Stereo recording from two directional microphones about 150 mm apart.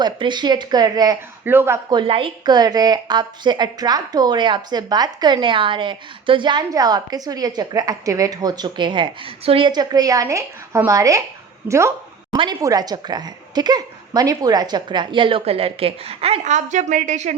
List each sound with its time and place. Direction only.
0.0 s a woman's voice: 30° right (ahead or behind)
1.5 s speech: 15° right (ahead or behind)
1.9 s a woman's voice: 35° right (ahead or behind)
11.7 s a sound: 20° right (ahead or behind)
12.4 s a woman's voice: 25° right (ahead or behind); by 17.3 s 55° right (ahead or behind)